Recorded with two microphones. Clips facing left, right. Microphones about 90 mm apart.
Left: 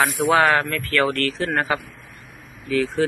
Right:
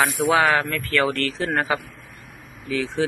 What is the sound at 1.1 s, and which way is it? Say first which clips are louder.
Speech: left 1 dB; 25° right (ahead or behind).